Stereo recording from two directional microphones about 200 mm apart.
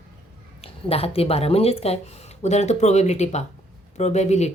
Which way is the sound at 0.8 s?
30° left (ahead or behind).